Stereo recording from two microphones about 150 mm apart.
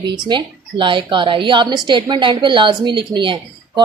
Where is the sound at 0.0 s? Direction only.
30° right (ahead or behind).